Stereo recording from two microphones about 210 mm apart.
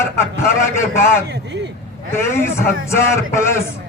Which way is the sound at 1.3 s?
55° right (ahead or behind).